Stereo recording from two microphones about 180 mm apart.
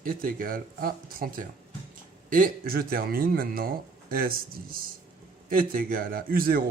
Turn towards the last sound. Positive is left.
turn(degrees=-55)  # may be behind; listen again after turning